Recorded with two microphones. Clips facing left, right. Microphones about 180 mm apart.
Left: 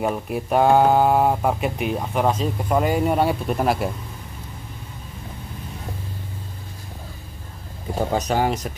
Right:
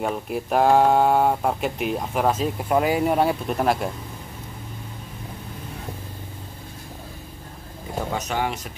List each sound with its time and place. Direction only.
0.0 s speech: centre (ahead or behind)
8.1 s speech: 35° left (ahead or behind)